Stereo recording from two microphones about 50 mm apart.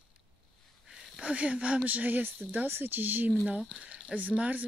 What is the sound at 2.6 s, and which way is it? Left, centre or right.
Speech, right.